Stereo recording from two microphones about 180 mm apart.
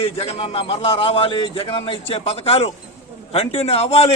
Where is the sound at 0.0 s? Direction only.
35° left (ahead or behind).